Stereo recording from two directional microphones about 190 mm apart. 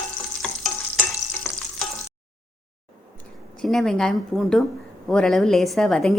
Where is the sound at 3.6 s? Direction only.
Centre (ahead or behind).